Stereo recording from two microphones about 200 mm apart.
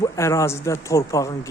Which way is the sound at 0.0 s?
15° left (ahead or behind).